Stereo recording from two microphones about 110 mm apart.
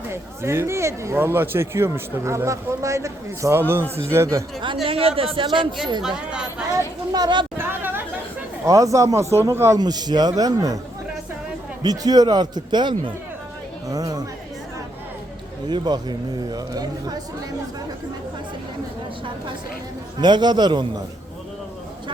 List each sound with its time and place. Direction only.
0.1 s speech: 25° right (ahead or behind)
4.9 s speech: 60° right (ahead or behind)
6.0 s speech: 5° right (ahead or behind)
7.1 s speech: 40° right (ahead or behind)
7.6 s chatter: 20° right (ahead or behind)
8.6 s speech: 30° right (ahead or behind)
9.7 s speech: 40° right (ahead or behind)
11.8 s speech: 35° right (ahead or behind)
13.8 s speech: 35° right (ahead or behind)
15.7 s speech: 40° right (ahead or behind)
20.1 s speech: 40° right (ahead or behind)